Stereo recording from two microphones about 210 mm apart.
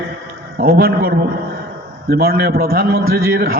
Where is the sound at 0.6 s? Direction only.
45° right (ahead or behind).